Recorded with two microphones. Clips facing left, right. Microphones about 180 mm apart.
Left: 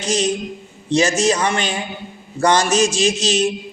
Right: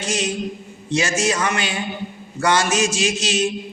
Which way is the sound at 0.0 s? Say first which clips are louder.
Left 4 dB; 35° left (ahead or behind).